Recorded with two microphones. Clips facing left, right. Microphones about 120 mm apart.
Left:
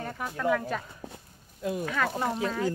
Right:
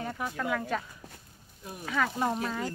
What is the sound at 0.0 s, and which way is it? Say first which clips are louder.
Speech: left 3 dB; centre (ahead or behind).